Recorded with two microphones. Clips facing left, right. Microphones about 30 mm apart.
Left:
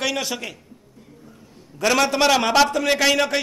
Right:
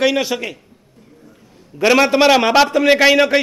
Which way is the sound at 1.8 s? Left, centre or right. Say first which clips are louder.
Right 6 dB; right.